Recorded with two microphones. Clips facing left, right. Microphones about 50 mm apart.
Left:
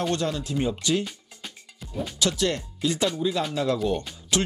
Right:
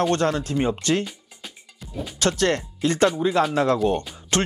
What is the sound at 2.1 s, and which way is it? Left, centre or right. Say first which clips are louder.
Speech: right 4 dB; right.